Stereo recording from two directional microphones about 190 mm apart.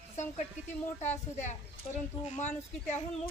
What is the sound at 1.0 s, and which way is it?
Speech, 40° left (ahead or behind).